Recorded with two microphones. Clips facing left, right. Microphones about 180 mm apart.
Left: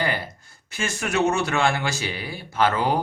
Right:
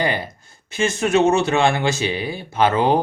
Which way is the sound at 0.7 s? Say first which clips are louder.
Right 8 dB; 20° right (ahead or behind).